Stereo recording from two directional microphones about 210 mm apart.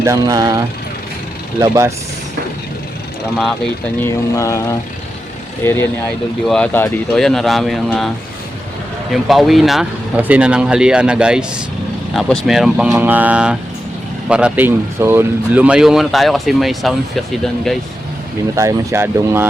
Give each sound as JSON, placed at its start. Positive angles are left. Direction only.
{"t": 0.0, "sound": "speech", "side_deg": -15}
{"t": 4.0, "sound": "speech", "side_deg": 15}
{"t": 5.6, "sound": "speech", "side_deg": 10}
{"t": 9.2, "sound": "speech", "side_deg": 0}
{"t": 18.5, "sound": "speech", "side_deg": -15}